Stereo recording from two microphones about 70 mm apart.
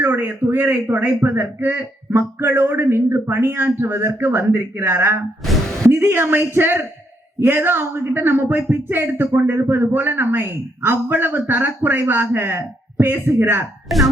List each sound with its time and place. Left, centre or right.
0.0 s speech: right
5.5 s a sound: centre
5.9 s a man's voice: right